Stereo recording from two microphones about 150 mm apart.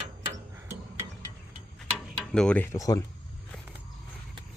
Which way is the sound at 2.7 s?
25° left (ahead or behind).